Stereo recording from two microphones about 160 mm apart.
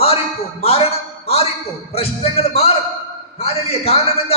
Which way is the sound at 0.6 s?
40° left (ahead or behind).